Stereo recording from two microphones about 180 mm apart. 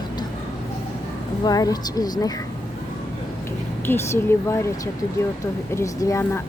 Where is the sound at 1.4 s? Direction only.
20° left (ahead or behind).